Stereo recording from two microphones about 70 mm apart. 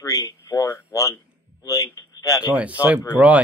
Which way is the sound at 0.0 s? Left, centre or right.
Left.